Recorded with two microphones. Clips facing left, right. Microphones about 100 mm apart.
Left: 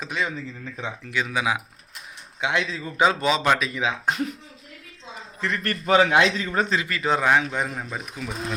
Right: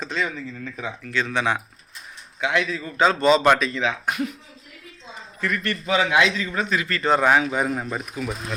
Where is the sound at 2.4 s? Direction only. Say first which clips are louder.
Right 2 dB; 25° left (ahead or behind).